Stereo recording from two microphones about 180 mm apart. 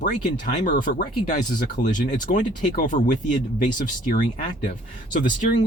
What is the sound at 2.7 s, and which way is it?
Speech, 45° left (ahead or behind).